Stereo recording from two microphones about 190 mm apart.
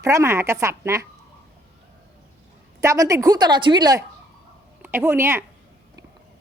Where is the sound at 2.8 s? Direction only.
15° right (ahead or behind).